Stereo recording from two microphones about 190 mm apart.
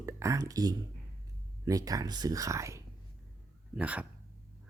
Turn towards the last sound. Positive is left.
turn(degrees=-5)  # may be behind; listen again after turning